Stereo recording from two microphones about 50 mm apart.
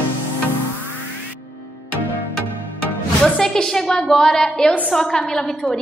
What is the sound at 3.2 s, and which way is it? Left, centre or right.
A woman's voice, centre.